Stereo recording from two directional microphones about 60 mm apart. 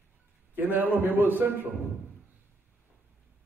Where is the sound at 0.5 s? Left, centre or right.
Right.